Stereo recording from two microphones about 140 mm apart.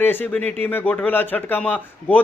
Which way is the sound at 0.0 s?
15° left (ahead or behind).